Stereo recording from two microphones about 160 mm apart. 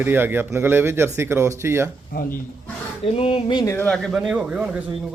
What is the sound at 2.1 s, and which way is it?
Speech, 70° left (ahead or behind).